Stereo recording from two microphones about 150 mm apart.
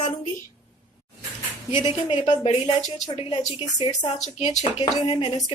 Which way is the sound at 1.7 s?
30° left (ahead or behind).